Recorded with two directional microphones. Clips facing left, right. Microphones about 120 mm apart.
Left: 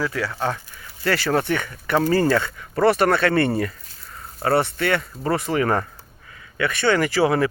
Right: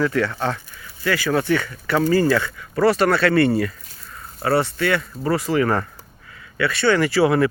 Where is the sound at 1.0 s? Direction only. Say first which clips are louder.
Right 1 dB; 30° left (ahead or behind).